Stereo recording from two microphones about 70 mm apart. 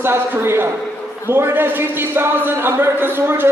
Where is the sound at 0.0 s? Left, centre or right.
Right.